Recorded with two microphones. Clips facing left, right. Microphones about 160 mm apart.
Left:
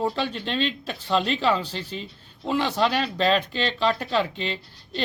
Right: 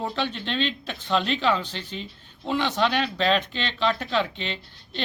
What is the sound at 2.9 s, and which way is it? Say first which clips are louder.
Speech: left 1 dB; 35° left (ahead or behind).